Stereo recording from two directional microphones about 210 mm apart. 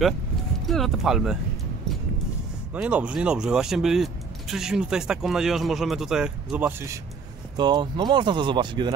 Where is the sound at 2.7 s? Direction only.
5° right (ahead or behind).